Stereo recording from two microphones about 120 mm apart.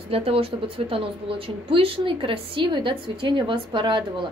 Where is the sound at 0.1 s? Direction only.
55° right (ahead or behind).